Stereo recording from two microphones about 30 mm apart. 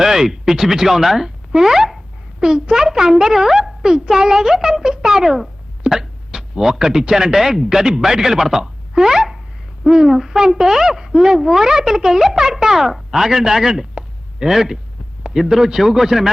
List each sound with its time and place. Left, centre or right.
0.0 s speech: centre